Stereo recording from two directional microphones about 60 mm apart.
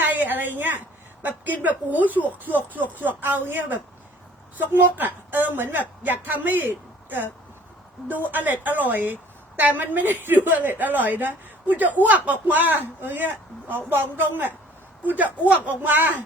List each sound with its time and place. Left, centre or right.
0.0 s a sound: right
1.2 s a woman's voice: right
8.3 s a woman's voice: right